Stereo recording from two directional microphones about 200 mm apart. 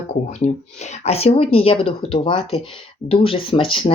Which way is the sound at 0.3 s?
35° left (ahead or behind).